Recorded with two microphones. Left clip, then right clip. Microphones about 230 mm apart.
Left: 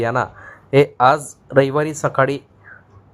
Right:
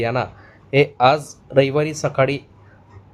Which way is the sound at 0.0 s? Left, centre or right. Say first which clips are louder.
Left 2 dB; centre.